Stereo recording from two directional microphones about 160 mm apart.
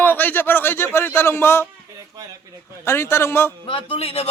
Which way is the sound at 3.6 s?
35° left (ahead or behind).